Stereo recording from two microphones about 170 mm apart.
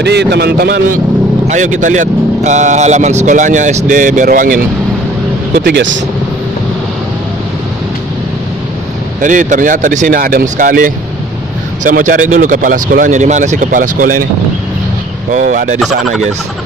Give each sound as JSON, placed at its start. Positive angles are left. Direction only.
{"t": 0.0, "sound": "a man's voice", "side_deg": -80}
{"t": 1.5, "sound": "speech", "side_deg": -45}
{"t": 5.5, "sound": "speech", "side_deg": -80}
{"t": 9.2, "sound": "speech", "side_deg": -50}
{"t": 15.3, "sound": "speech", "side_deg": -50}